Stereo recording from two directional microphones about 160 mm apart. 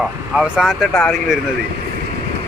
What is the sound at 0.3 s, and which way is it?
Speech, 5° right (ahead or behind).